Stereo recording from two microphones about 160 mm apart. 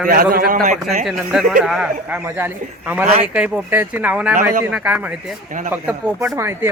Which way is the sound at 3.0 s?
40° right (ahead or behind).